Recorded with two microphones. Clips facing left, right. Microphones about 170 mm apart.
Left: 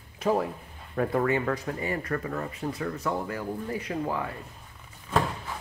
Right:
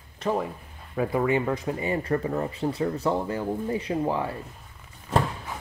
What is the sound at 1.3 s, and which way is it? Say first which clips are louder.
Speech: right 2 dB; 20° right (ahead or behind).